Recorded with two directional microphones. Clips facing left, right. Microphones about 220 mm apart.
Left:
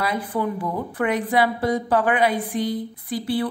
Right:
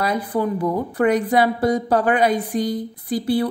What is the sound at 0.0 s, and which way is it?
A woman's voice, 40° right (ahead or behind).